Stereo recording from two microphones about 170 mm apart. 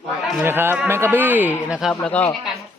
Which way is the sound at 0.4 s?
15° right (ahead or behind).